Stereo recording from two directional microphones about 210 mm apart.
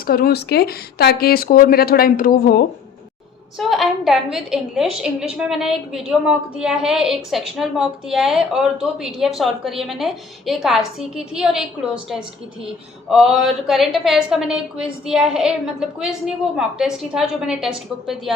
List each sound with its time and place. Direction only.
0.1 s speech: 45° left (ahead or behind)
3.6 s a woman's voice: centre (ahead or behind)
13.1 s a woman's voice: centre (ahead or behind)